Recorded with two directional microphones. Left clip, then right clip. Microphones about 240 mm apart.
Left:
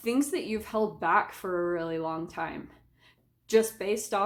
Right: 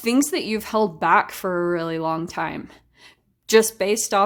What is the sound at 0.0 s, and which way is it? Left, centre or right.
A woman's voice, right.